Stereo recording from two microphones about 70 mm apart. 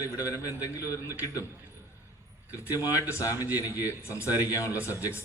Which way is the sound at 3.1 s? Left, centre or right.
Left.